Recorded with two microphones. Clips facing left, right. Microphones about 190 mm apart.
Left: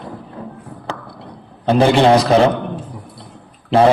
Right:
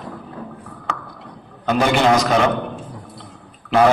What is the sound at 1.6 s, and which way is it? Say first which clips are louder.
Speech: left 4 dB; 30° left (ahead or behind).